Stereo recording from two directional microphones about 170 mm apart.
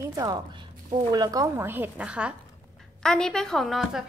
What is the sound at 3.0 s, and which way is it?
Speech, 5° left (ahead or behind).